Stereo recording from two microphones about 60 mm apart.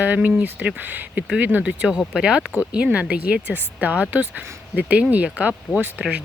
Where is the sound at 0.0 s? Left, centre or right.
Right.